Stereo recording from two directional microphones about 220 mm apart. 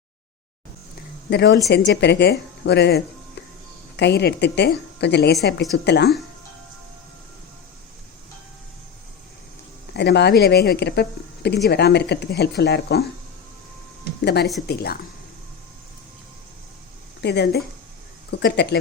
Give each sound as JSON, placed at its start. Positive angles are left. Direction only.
{"t": 1.3, "sound": "speech", "side_deg": 55}
{"t": 9.9, "sound": "speech", "side_deg": 50}
{"t": 14.2, "sound": "speech", "side_deg": 50}
{"t": 17.2, "sound": "a woman's voice", "side_deg": 50}